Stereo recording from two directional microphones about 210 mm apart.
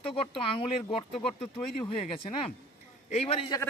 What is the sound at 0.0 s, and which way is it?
Speech, 25° left (ahead or behind).